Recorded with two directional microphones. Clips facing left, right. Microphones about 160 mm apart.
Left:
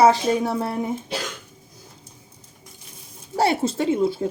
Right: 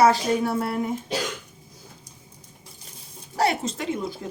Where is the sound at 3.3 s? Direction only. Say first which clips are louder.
Left 3 dB; 30° left (ahead or behind).